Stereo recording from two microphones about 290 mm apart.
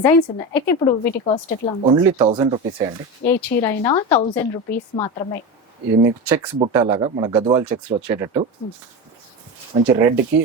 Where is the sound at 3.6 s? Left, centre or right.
Centre.